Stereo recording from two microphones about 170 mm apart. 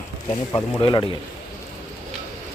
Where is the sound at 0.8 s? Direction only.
25° left (ahead or behind).